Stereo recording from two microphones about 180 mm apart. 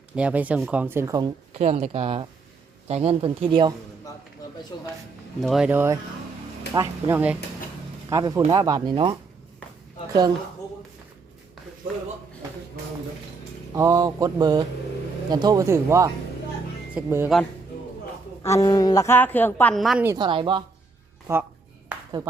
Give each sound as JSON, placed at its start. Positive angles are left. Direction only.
{"t": 0.2, "sound": "speech", "side_deg": -5}
{"t": 1.5, "sound": "speech", "side_deg": -35}
{"t": 5.4, "sound": "speech", "side_deg": 0}
{"t": 13.7, "sound": "speech", "side_deg": -20}
{"t": 18.4, "sound": "a woman's voice", "side_deg": 15}
{"t": 20.1, "sound": "speech", "side_deg": -25}
{"t": 21.3, "sound": "speech", "side_deg": -15}
{"t": 21.9, "sound": "a sound", "side_deg": -10}